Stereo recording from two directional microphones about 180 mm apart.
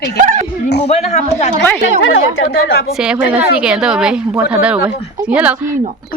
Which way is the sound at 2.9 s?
5° right (ahead or behind).